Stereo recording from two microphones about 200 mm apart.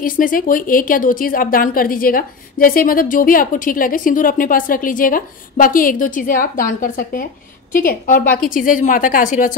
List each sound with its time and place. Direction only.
0.0 s speech: 45° left (ahead or behind)